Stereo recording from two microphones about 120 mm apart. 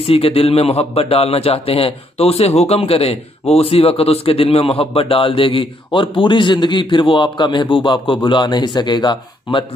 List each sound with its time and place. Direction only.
0.0 s a man's voice: 55° left (ahead or behind)